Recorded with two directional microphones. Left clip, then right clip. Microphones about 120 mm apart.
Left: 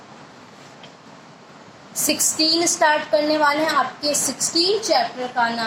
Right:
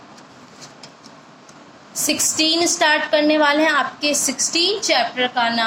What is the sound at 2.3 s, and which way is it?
A woman's voice, 40° right (ahead or behind).